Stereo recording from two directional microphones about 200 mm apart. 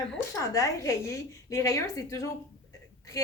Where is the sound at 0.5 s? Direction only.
15° left (ahead or behind).